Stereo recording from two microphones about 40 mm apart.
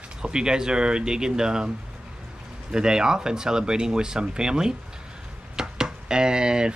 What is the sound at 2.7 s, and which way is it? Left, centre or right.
Speech, centre.